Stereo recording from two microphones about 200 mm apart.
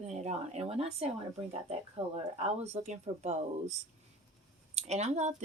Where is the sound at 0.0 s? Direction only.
35° right (ahead or behind).